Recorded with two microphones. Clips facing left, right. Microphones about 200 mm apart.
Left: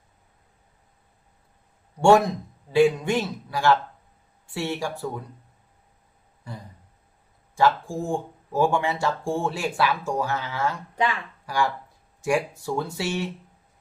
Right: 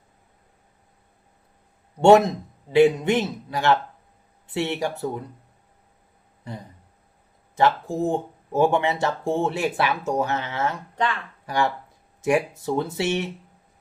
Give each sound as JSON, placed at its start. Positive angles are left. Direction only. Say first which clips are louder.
{"t": 2.0, "sound": "speech", "louder": "right 3 dB", "side_deg": -20}
{"t": 7.5, "sound": "speech", "louder": "right 1 dB", "side_deg": -20}
{"t": 10.9, "sound": "speech", "louder": "left 1 dB", "side_deg": 10}
{"t": 11.4, "sound": "speech", "louder": "right 2 dB", "side_deg": -20}